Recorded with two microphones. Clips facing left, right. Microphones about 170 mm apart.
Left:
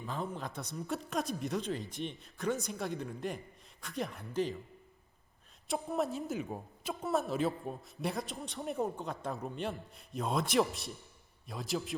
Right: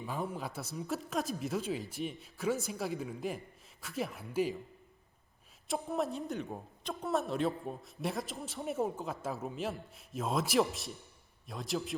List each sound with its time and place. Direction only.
0.0 s a woman's voice: 10° right (ahead or behind)
5.6 s a woman's voice: centre (ahead or behind)